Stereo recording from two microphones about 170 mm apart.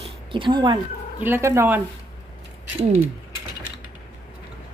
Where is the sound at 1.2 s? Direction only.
15° right (ahead or behind).